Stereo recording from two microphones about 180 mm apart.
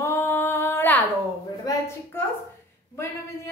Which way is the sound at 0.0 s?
10° left (ahead or behind).